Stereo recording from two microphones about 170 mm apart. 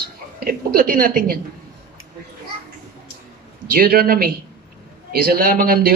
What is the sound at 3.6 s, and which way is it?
Speech, 60° right (ahead or behind).